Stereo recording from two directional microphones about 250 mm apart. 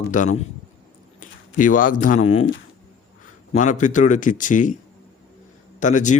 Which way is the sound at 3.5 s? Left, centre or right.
Left.